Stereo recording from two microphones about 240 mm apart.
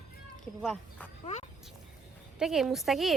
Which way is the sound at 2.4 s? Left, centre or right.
Centre.